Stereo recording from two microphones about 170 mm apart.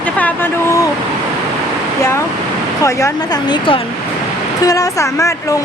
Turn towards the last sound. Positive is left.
turn(degrees=20)  # may be behind; listen again after turning